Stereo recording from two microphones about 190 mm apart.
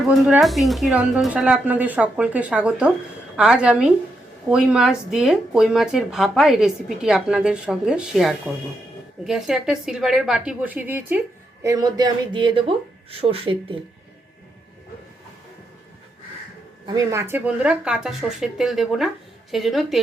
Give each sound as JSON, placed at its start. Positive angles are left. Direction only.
{"t": 0.1, "sound": "a woman's voice", "side_deg": 0}
{"t": 16.8, "sound": "a woman's voice", "side_deg": -20}